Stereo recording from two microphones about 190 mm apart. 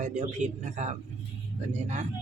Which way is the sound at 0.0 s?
40° right (ahead or behind).